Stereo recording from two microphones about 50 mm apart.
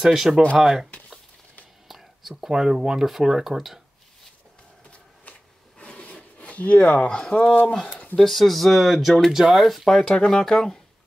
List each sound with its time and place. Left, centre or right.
0.0 s speech: centre
1.9 s speech: centre
5.8 s rub: left
6.3 s speech: left
8.2 s speech: centre
10.1 s speech: centre